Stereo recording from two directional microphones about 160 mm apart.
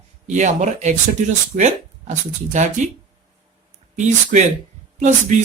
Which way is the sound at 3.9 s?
50° right (ahead or behind).